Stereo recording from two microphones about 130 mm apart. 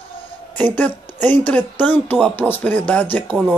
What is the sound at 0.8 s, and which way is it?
Speech, 15° left (ahead or behind).